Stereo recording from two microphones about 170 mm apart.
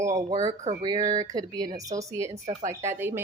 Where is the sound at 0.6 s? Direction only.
45° right (ahead or behind).